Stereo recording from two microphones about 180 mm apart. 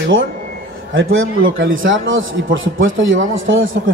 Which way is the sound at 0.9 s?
90° right.